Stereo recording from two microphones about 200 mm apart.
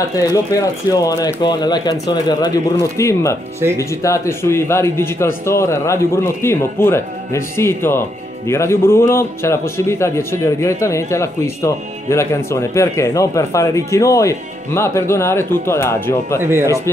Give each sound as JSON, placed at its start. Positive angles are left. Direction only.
{"t": 0.2, "sound": "speech", "side_deg": 15}
{"t": 16.3, "sound": "speech", "side_deg": -10}